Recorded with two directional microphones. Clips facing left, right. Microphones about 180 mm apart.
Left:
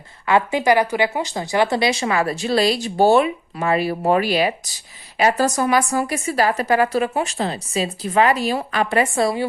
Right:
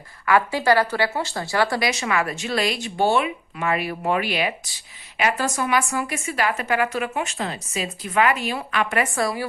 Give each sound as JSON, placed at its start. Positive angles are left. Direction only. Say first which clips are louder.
{"t": 0.3, "sound": "speech", "louder": "left 2 dB", "side_deg": 20}